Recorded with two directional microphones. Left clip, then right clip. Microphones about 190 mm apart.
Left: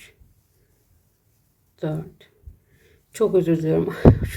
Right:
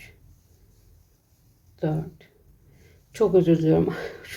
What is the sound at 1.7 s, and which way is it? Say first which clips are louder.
Speech: even; 20° left (ahead or behind).